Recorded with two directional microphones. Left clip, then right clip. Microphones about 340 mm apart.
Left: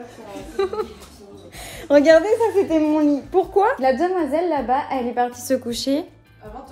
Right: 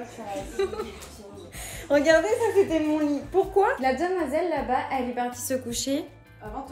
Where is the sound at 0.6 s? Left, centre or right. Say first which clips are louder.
Left 5 dB; centre.